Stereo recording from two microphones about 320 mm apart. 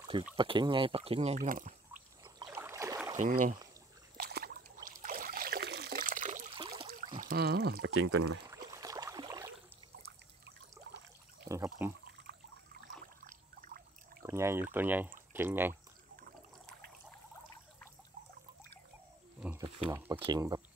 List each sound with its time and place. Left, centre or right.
0.1 s speech: centre
2.3 s boat: centre
3.2 s speech: right
4.2 s rowboat: right
4.8 s trickle: right
7.2 s speech: right
8.1 s speech: right
8.5 s rowboat: centre
11.4 s speech: centre
12.3 s trickle: right
13.2 s rowboat: right
14.2 s speech: centre
19.4 s a sound: centre
19.9 s speech: centre